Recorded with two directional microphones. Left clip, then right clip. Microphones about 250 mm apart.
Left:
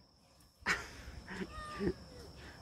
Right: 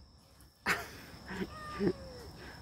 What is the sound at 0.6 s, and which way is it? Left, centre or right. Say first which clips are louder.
Cat: right 2 dB; centre.